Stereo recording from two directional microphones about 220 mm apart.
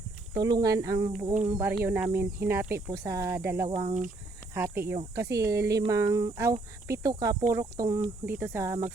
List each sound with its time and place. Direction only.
0.3 s speech: 20° right (ahead or behind)
3.7 s speech: 25° right (ahead or behind)
4.5 s speech: 10° right (ahead or behind)